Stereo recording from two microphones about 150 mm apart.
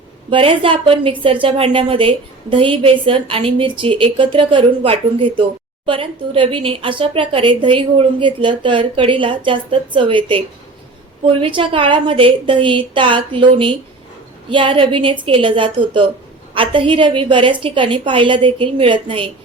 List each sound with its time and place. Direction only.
0.3 s speech: 35° right (ahead or behind)